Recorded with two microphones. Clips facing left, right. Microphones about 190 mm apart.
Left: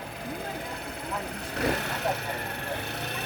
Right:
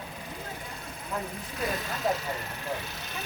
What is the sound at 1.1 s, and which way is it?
Vehicle, 70° left (ahead or behind).